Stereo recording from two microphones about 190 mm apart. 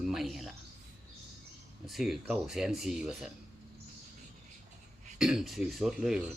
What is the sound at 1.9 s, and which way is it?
A man's voice, centre (ahead or behind).